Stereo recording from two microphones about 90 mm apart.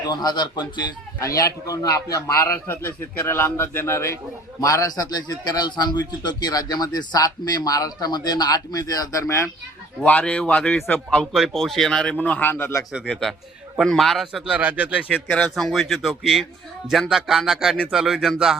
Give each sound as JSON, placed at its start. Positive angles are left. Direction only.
{"t": 0.1, "sound": "speech", "side_deg": 50}
{"t": 1.2, "sound": "a man's voice", "side_deg": 40}
{"t": 10.0, "sound": "speech", "side_deg": 15}
{"t": 11.3, "sound": "speech", "side_deg": -5}
{"t": 12.2, "sound": "a man's voice", "side_deg": 20}
{"t": 13.1, "sound": "speech", "side_deg": 5}
{"t": 14.5, "sound": "speech", "side_deg": -15}
{"t": 15.4, "sound": "speech", "side_deg": 0}